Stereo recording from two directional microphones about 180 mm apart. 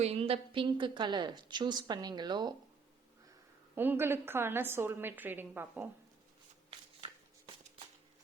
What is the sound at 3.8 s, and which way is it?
A woman's voice, 10° right (ahead or behind).